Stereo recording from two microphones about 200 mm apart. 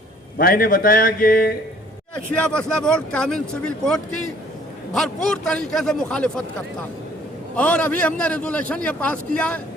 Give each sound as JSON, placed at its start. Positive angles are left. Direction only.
{"t": 0.3, "sound": "speech", "side_deg": 45}
{"t": 2.1, "sound": "speech", "side_deg": 5}
{"t": 7.5, "sound": "a man's voice", "side_deg": 5}